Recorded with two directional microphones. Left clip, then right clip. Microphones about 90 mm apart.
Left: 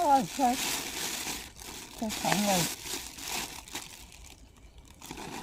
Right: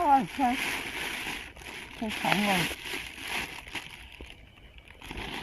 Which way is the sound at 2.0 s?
35° left (ahead or behind).